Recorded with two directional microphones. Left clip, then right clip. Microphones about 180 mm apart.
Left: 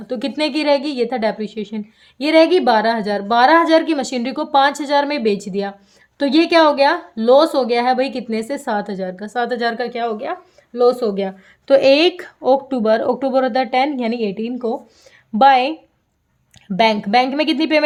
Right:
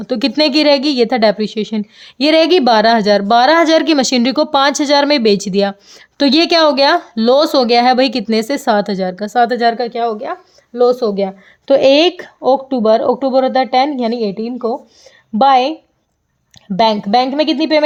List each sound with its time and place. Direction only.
0.0 s a woman's voice: 45° right (ahead or behind); by 15.7 s 25° right (ahead or behind)
16.7 s speech: 20° right (ahead or behind)